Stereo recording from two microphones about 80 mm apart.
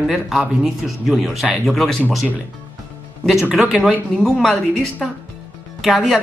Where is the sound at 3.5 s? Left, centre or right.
Centre.